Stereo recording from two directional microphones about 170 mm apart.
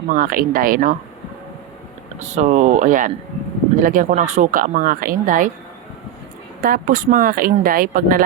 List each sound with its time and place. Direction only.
0.1 s speech: 55° right (ahead or behind)
2.1 s speech: 45° right (ahead or behind)
6.6 s speech: 55° right (ahead or behind)